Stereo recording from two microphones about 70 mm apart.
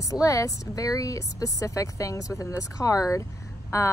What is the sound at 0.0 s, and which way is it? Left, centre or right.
Speech, left.